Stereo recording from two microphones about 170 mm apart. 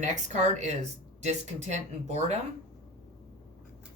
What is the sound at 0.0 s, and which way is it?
Speech, 45° right (ahead or behind).